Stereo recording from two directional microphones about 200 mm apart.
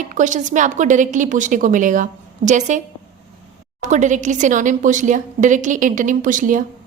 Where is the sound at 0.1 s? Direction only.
40° right (ahead or behind).